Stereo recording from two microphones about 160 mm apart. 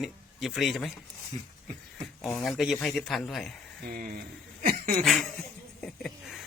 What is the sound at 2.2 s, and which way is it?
Speech, centre (ahead or behind).